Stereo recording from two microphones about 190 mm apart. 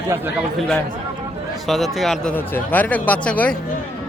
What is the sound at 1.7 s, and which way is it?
Speech, centre (ahead or behind).